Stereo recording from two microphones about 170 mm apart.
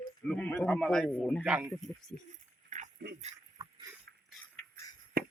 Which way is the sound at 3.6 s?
20° right (ahead or behind).